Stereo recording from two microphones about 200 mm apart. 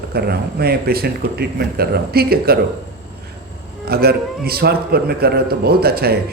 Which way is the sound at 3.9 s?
50° right (ahead or behind).